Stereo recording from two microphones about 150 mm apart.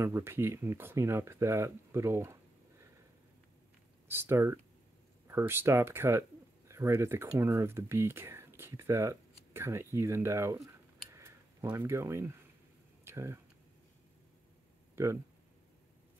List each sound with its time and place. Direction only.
0.0 s speech: 20° right (ahead or behind)
4.1 s speech: 15° right (ahead or behind)
11.1 s scissors: 20° right (ahead or behind)
13.0 s a sound: 20° right (ahead or behind)